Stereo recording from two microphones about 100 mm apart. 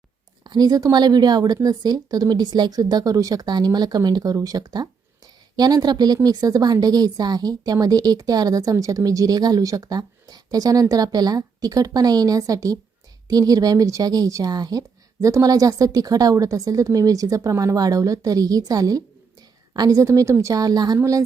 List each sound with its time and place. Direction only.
0.4 s a woman's voice: 45° right (ahead or behind)